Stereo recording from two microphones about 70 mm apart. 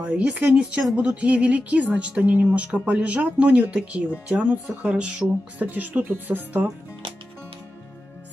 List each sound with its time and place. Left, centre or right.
0.0 s speech: centre